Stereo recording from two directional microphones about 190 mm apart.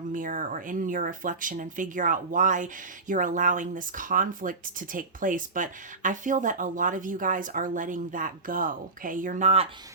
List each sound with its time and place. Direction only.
0.1 s speech: 45° right (ahead or behind)